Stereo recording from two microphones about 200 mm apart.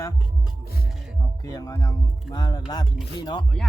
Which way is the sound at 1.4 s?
15° left (ahead or behind).